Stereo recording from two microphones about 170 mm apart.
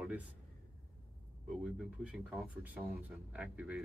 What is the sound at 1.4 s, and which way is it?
Speech, 5° right (ahead or behind).